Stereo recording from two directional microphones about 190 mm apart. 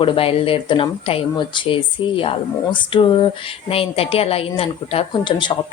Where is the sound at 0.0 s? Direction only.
30° left (ahead or behind).